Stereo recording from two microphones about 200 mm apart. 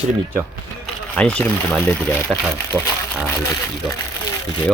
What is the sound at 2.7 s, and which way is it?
Speech, 15° right (ahead or behind).